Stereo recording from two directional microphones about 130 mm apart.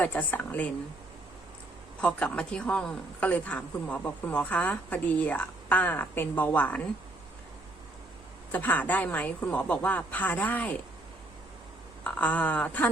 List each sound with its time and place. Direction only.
0.0 s a woman's voice: 15° left (ahead or behind)
2.0 s a woman's voice: 10° left (ahead or behind)
8.5 s a woman's voice: 15° left (ahead or behind)
12.0 s a woman's voice: 10° left (ahead or behind)